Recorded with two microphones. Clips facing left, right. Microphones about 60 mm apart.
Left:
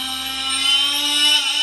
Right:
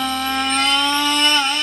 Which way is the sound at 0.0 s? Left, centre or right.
Right.